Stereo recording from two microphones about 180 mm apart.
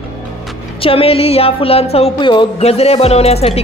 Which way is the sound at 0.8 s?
30° left (ahead or behind).